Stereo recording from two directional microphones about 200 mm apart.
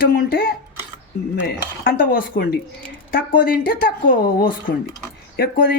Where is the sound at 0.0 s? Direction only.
50° left (ahead or behind).